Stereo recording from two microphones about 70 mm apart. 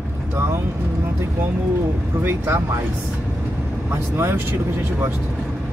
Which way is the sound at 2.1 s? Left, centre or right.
Right.